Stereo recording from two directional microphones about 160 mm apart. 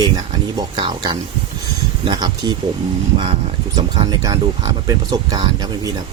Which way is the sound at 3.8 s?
25° right (ahead or behind).